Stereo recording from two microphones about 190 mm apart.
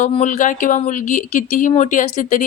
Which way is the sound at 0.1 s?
35° left (ahead or behind).